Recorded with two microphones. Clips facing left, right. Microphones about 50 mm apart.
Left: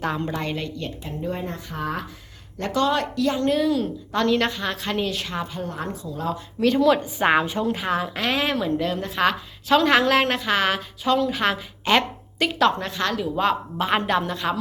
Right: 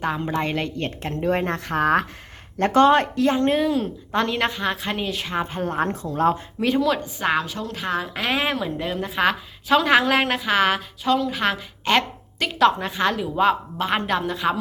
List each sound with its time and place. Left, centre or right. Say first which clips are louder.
0.0 s a woman's voice: right 1 dB; centre
0.5 s a woman's voice: right 4 dB; right
1.1 s speech: right 7 dB; right
2.6 s a woman's voice: right 6 dB; right; by 5.3 s centre
5.3 s a woman's voice: right 4 dB; right
6.6 s a woman's voice: left 4 dB; centre
7.2 s a woman's voice: left 3 dB; left
7.9 s a woman's voice: left 1 dB; centre
12.8 s a woman's voice: right 3 dB; centre
13.3 s a woman's voice: right 3 dB; centre